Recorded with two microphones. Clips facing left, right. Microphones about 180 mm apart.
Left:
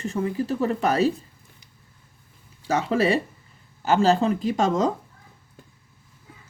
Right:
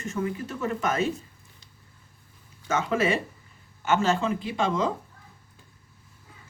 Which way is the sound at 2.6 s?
35° left (ahead or behind).